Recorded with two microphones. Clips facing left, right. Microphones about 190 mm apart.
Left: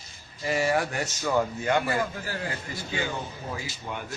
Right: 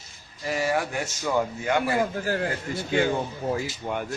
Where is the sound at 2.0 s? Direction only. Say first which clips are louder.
Right 6 dB; 45° right (ahead or behind).